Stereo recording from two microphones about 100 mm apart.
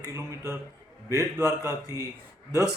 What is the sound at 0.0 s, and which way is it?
A man's voice, 30° right (ahead or behind).